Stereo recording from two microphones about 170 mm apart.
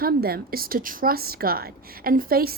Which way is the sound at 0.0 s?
65° right (ahead or behind).